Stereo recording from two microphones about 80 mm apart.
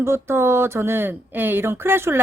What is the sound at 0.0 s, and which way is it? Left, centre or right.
Speech, right.